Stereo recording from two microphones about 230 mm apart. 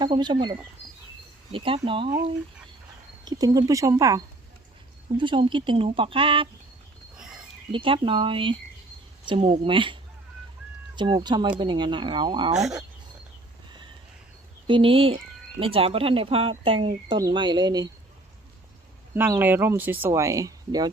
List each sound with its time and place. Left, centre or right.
0.0 s speech: centre
1.5 s speech: right
3.2 s speech: centre
7.7 s speech: right
12.5 s speech: centre
14.7 s speech: right
19.1 s speech: centre